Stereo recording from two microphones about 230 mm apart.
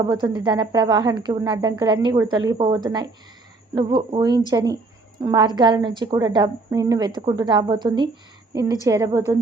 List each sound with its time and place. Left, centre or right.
0.0 s a woman's voice: centre